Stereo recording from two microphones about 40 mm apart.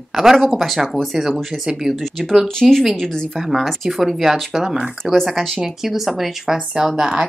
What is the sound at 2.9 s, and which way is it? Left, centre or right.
Speech, centre.